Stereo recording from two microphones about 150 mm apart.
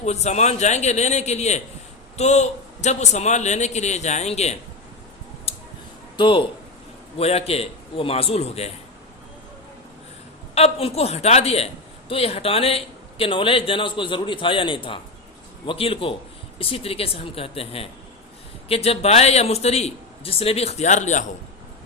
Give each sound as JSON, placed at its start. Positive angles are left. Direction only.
{"t": 0.0, "sound": "a man's voice", "side_deg": 45}
{"t": 5.5, "sound": "a sound", "side_deg": 40}
{"t": 6.1, "sound": "a woman's voice", "side_deg": 35}
{"t": 10.5, "sound": "a woman's voice", "side_deg": 40}